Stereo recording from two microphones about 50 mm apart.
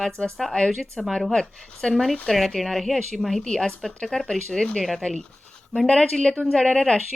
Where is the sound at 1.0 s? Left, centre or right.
Centre.